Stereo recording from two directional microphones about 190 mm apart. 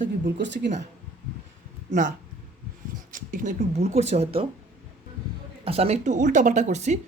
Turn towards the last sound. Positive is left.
turn(degrees=-35)  # may be behind; listen again after turning